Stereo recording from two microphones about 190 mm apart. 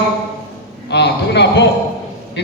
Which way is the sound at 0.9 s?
60° left (ahead or behind).